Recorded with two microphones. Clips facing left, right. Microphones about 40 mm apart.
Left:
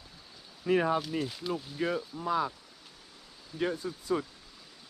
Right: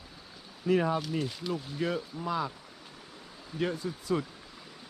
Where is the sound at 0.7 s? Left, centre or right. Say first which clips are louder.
Even; left.